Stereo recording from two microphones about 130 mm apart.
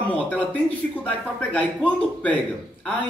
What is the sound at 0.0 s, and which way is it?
A man's voice, 10° left (ahead or behind).